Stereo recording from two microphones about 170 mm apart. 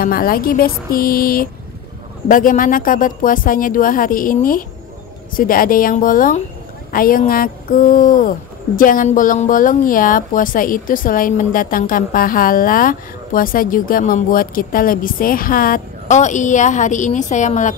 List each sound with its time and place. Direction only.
0.0 s speech: 60° left (ahead or behind)